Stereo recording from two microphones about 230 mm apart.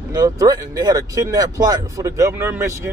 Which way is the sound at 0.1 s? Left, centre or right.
Centre.